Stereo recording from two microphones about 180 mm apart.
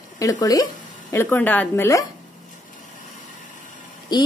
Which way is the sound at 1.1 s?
10° left (ahead or behind).